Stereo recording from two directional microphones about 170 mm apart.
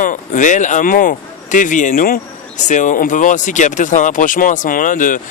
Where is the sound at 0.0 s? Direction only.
50° left (ahead or behind).